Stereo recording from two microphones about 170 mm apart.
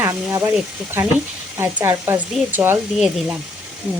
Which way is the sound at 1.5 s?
15° right (ahead or behind).